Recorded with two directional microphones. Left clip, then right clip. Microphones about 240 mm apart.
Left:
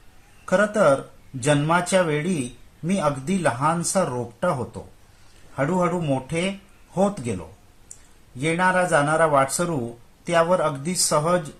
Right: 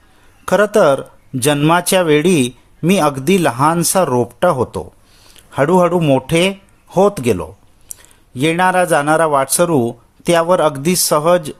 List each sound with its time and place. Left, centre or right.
0.4 s speech: right
8.4 s speech: right